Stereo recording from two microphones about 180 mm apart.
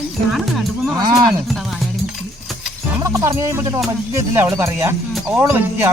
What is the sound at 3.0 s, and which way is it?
Music, 15° right (ahead or behind).